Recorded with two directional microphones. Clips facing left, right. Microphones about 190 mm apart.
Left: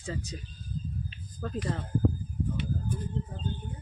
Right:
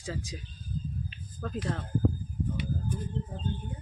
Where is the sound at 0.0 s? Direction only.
Centre (ahead or behind).